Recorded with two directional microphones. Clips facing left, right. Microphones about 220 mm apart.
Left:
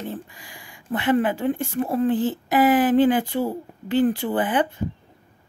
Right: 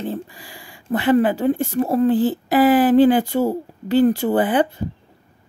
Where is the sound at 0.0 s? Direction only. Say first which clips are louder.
Right 5 dB; 35° right (ahead or behind).